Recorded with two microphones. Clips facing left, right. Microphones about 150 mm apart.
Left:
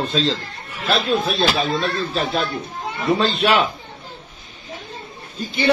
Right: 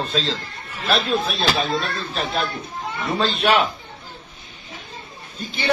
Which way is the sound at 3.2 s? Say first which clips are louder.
Left 3 dB; centre (ahead or behind).